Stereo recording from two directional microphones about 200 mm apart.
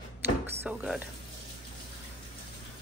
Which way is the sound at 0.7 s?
5° right (ahead or behind).